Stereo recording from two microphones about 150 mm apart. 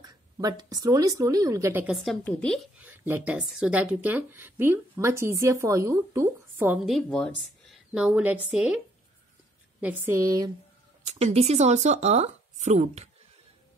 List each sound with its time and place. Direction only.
0.0 s a woman's voice: 25° right (ahead or behind)
2.0 s a woman's voice: 5° left (ahead or behind)
2.8 s speech: 10° right (ahead or behind)
6.9 s speech: 5° left (ahead or behind)
7.9 s a woman's voice: 5° right (ahead or behind); by 10.5 s 25° right (ahead or behind)
11.1 s speech: 45° right (ahead or behind)